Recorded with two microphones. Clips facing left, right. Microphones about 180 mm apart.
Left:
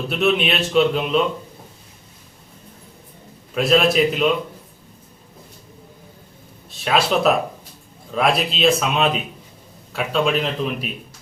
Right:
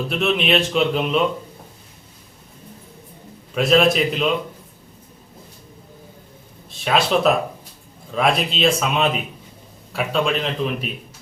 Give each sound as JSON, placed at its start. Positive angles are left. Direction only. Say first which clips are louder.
{"t": 0.1, "sound": "speech", "louder": "even", "side_deg": 0}
{"t": 3.5, "sound": "speech", "louder": "even", "side_deg": 0}
{"t": 6.7, "sound": "speech", "louder": "even", "side_deg": 0}